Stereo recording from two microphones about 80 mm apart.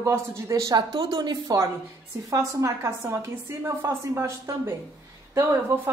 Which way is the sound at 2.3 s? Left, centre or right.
Right.